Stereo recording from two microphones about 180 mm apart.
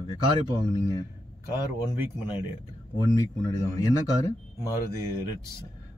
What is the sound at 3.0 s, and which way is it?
Speech, 20° left (ahead or behind).